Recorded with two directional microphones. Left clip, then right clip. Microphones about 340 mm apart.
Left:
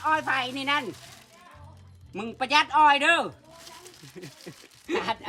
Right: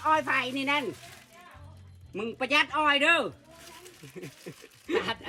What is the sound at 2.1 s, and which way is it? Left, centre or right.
Speech, centre.